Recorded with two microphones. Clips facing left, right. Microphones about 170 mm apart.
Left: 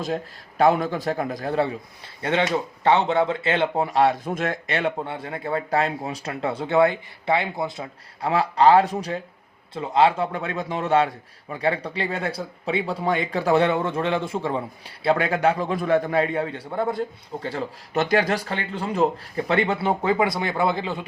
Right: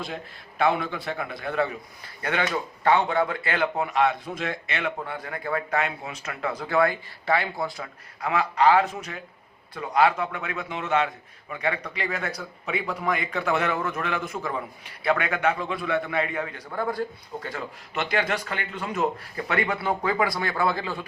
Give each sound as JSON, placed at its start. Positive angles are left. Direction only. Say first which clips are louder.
{"t": 0.6, "sound": "a man's voice", "louder": "left 5 dB", "side_deg": 40}
{"t": 4.3, "sound": "a man's voice", "louder": "left 5 dB", "side_deg": 50}